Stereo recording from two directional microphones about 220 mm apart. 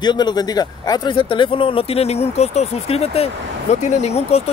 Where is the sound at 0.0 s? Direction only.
20° left (ahead or behind).